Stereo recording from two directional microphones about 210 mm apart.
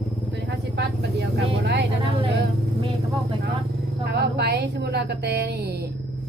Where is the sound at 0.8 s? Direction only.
55° right (ahead or behind).